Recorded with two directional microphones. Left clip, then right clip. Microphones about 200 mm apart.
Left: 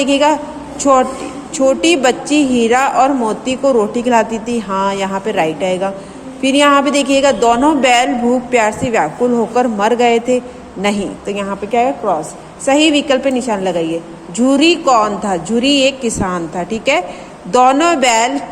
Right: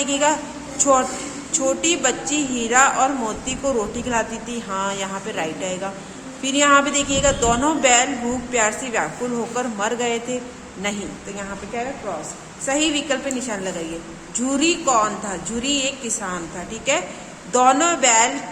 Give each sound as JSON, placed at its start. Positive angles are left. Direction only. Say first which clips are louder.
{"t": 0.0, "sound": "a woman's voice", "louder": "left 8 dB", "side_deg": 25}